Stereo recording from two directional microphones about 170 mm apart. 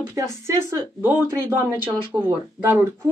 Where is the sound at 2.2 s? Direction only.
10° right (ahead or behind).